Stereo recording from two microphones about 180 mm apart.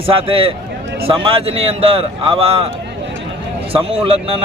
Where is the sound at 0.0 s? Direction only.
30° right (ahead or behind).